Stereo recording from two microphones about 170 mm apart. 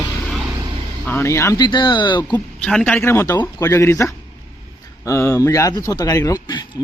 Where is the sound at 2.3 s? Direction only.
5° left (ahead or behind).